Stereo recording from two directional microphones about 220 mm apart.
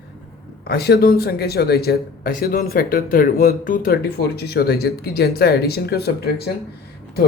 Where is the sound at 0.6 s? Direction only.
45° left (ahead or behind).